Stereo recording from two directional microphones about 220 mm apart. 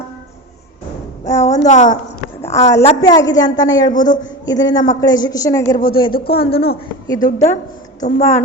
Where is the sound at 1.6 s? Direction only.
35° left (ahead or behind).